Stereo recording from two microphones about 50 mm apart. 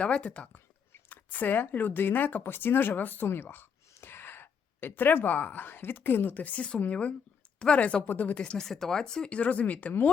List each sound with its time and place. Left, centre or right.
0.0 s speech: left
1.1 s speech: left
8.4 s speech: centre
8.6 s speech: centre
9.3 s speech: left